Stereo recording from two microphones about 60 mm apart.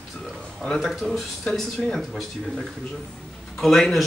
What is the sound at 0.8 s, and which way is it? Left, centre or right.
Speech, centre.